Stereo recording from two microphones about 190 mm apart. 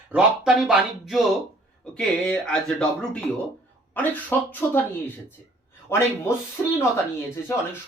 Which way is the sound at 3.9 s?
10° left (ahead or behind).